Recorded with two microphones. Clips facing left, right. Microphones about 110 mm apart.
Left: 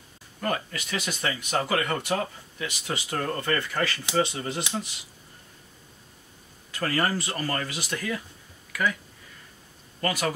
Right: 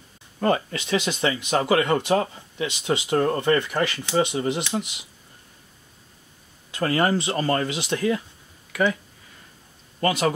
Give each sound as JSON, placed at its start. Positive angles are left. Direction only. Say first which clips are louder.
{"t": 0.4, "sound": "speech", "louder": "right 7 dB", "side_deg": -25}
{"t": 6.7, "sound": "speech", "louder": "right 5 dB", "side_deg": -20}
{"t": 9.9, "sound": "speech", "louder": "right 5 dB", "side_deg": -25}